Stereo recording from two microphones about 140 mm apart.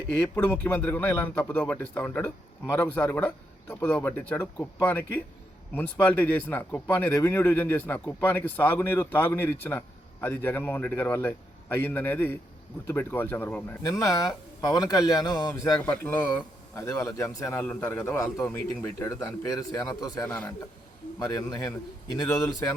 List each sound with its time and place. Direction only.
0.2 s speech: 15° left (ahead or behind)
15.8 s speech: 15° left (ahead or behind)
20.2 s speech: 10° left (ahead or behind)